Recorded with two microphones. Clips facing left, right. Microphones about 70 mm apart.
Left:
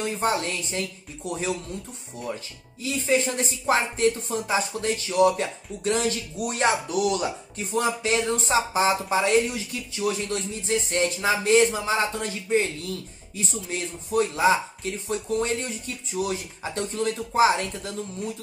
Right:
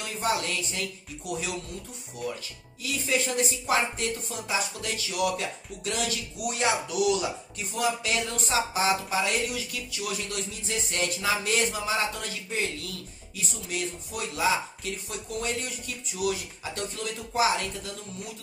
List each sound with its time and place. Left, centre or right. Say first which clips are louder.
0.0 s speech: left 4 dB; left
2.8 s speech: left 5 dB; left